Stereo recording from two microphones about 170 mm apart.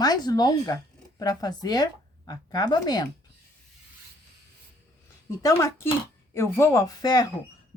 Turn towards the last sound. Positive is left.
turn(degrees=20)  # may be behind; listen again after turning